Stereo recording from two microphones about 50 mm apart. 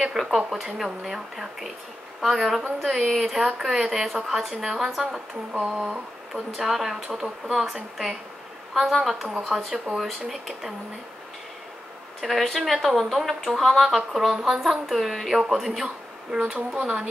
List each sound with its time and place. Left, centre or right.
0.0 s speech: centre
4.6 s speech: centre
5.7 s a sound: centre
6.5 s speech: centre
8.7 s speech: centre
9.9 s speech: centre
12.2 s speech: centre
14.6 s speech: centre
15.8 s speech: centre